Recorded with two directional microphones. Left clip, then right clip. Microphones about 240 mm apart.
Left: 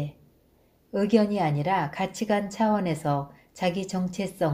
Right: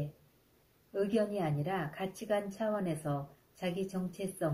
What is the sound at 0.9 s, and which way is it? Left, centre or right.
Speech, left.